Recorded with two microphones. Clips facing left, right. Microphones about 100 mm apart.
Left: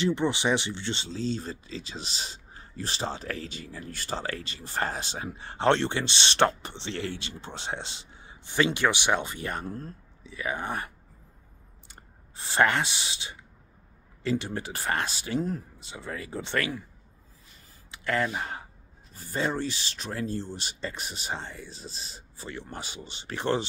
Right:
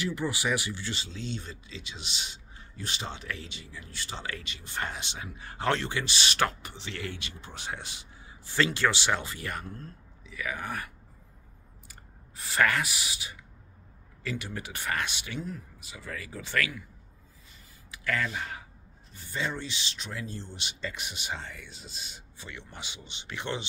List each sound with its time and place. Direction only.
0.0 s speech: 25° left (ahead or behind)
11.9 s speech: 30° left (ahead or behind)
17.9 s speech: 30° left (ahead or behind)